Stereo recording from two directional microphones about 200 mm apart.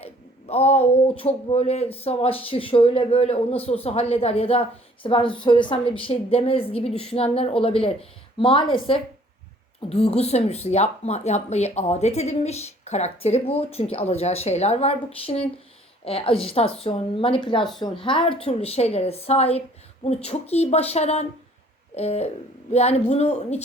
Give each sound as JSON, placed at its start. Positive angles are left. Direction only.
{"t": 0.0, "sound": "speech", "side_deg": 30}